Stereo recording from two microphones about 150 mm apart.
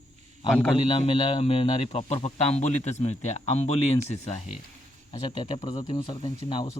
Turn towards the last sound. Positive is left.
turn(degrees=35)  # may be behind; listen again after turning